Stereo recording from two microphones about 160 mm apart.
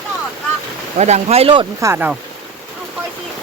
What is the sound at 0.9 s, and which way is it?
Speech, 45° right (ahead or behind).